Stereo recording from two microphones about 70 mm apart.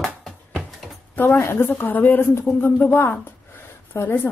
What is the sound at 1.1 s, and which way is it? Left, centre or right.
A woman's voice, left.